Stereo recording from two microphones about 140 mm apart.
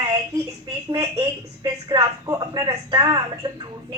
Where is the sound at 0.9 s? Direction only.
20° right (ahead or behind).